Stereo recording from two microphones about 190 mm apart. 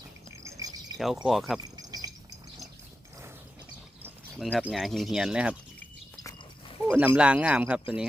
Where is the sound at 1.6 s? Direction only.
20° right (ahead or behind).